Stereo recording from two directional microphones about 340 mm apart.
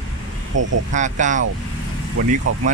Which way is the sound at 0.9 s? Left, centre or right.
Right.